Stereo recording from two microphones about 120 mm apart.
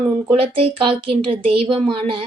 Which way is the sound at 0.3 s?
50° right (ahead or behind).